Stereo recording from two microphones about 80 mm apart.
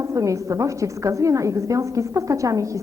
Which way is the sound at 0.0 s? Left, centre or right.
Right.